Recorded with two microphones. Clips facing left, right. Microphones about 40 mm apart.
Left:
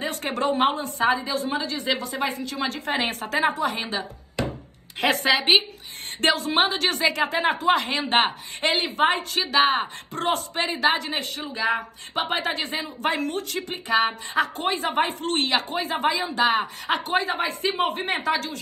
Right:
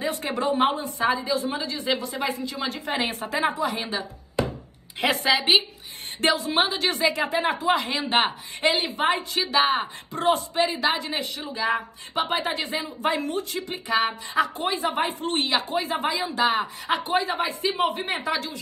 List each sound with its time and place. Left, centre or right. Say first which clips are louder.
0.0 s a woman's voice: even; left
5.2 s a woman's voice: left 1 dB; left
6.2 s a woman's voice: left 1 dB; left